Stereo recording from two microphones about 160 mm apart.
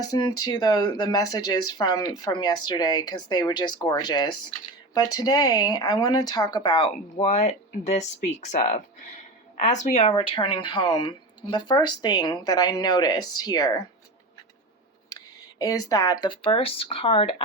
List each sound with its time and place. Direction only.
0.1 s speech: 25° left (ahead or behind)
15.1 s speech: 20° left (ahead or behind)